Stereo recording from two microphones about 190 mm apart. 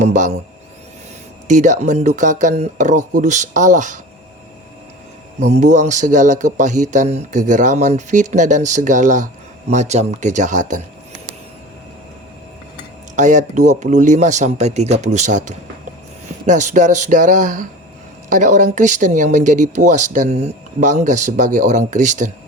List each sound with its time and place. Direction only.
0.0 s speech: 40° right (ahead or behind)
1.5 s speech: 40° right (ahead or behind)
5.4 s speech: 35° right (ahead or behind)
13.1 s speech: 40° right (ahead or behind)